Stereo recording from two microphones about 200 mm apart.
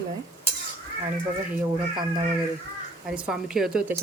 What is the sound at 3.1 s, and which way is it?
Speech, 5° right (ahead or behind).